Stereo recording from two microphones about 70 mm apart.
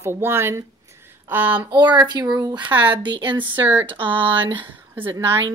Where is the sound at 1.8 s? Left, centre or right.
Right.